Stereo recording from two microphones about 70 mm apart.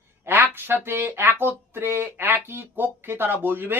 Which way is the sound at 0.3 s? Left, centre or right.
Right.